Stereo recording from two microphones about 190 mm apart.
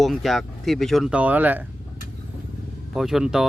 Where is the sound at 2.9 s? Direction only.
Centre (ahead or behind).